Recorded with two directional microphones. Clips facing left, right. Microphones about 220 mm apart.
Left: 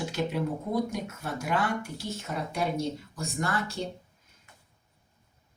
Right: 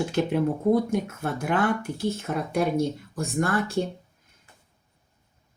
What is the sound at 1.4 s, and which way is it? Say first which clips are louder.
Speech: right 5 dB; 55° right (ahead or behind).